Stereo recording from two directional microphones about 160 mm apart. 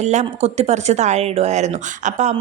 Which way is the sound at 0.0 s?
45° right (ahead or behind).